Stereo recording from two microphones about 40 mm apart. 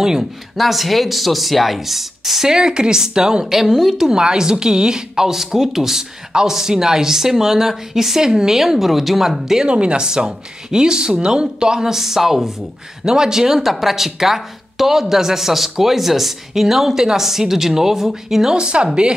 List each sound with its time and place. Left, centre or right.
0.0 s speech: centre
2.5 s speech: centre
9.7 s speech: right; by 18.6 s centre
18.6 s speech: right